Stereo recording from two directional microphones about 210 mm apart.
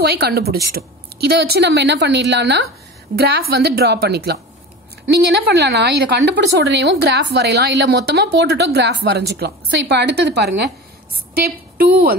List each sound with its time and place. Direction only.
0.1 s a woman's voice: 50° right (ahead or behind)